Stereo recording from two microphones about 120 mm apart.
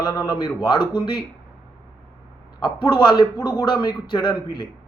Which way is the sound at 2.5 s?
35° left (ahead or behind).